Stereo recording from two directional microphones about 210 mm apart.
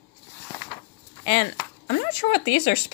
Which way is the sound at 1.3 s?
35° left (ahead or behind).